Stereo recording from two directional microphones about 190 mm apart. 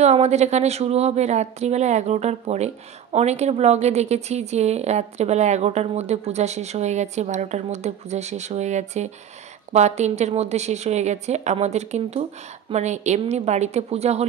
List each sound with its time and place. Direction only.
0.0 s speech: 35° right (ahead or behind)